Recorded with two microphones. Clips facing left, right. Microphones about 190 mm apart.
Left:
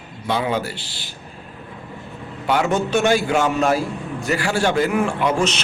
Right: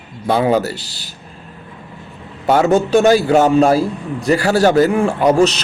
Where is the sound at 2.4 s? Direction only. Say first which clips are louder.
Right 6 dB; 40° right (ahead or behind).